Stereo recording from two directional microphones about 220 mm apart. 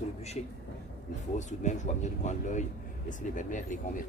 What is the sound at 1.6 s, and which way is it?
Speech, 30° left (ahead or behind).